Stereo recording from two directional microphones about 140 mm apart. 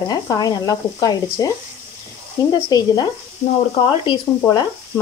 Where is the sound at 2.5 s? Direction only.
30° left (ahead or behind).